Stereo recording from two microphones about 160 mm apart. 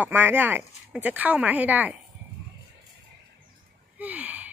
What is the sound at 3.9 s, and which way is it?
Gasp, 10° right (ahead or behind).